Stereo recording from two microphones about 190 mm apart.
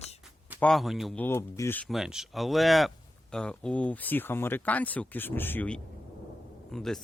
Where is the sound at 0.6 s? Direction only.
Centre (ahead or behind).